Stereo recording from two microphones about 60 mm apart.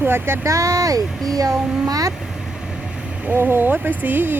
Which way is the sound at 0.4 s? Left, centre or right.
Right.